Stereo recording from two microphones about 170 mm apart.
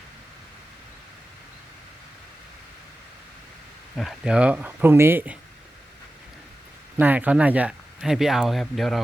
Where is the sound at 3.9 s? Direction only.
Centre (ahead or behind).